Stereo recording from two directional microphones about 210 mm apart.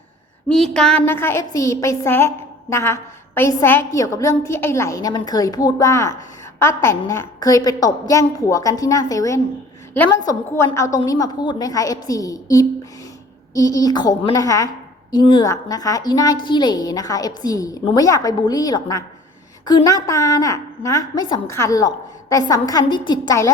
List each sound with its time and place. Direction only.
0.4 s a woman's voice: 5° left (ahead or behind)